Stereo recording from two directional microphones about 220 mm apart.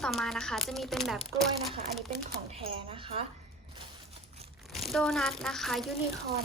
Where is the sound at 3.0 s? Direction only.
25° right (ahead or behind).